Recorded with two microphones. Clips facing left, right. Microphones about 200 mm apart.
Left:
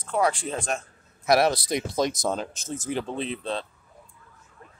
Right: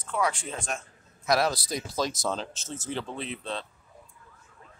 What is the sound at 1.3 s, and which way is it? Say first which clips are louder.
Speech: left 5 dB; 25° left (ahead or behind).